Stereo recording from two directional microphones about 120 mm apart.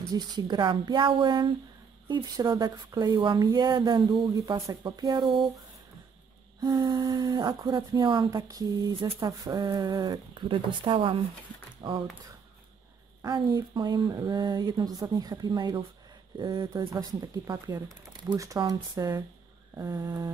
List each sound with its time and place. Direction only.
0.1 s speech: 35° right (ahead or behind)
6.6 s speech: 35° right (ahead or behind)
13.2 s speech: 35° right (ahead or behind)
16.9 s speech: 30° right (ahead or behind)
18.3 s a sound: 25° right (ahead or behind)
18.6 s speech: 30° right (ahead or behind)
19.7 s a sound: 25° right (ahead or behind)